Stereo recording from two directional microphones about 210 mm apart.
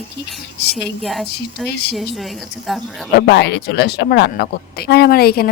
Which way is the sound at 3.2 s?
50° left (ahead or behind).